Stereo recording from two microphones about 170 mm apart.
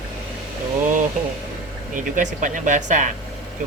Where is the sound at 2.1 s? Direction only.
50° right (ahead or behind).